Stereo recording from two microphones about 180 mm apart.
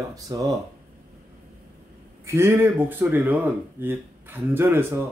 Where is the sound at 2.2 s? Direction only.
15° right (ahead or behind).